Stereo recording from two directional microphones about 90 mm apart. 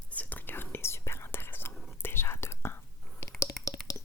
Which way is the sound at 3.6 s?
Centre (ahead or behind).